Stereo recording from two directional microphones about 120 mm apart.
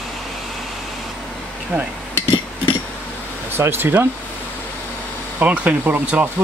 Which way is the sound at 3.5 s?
20° right (ahead or behind).